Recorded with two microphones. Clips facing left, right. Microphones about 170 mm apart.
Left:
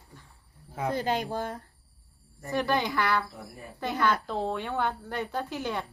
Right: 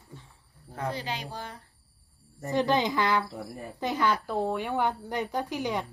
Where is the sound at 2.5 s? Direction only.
20° right (ahead or behind).